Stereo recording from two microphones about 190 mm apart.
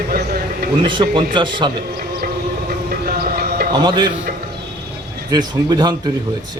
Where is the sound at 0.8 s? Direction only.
25° right (ahead or behind).